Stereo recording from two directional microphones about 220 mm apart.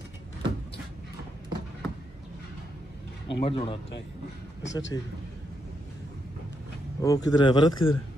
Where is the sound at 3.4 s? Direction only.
25° left (ahead or behind).